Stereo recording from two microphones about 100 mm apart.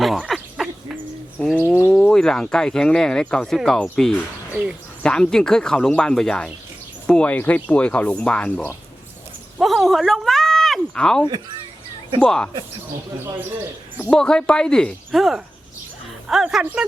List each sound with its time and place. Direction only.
0.0 s a sound: centre (ahead or behind)
1.4 s speech: 10° left (ahead or behind)
1.6 s speech: 25° left (ahead or behind)
1.9 s speech: 5° left (ahead or behind)
12.2 s speech: 5° left (ahead or behind)
14.0 s speech: 10° left (ahead or behind)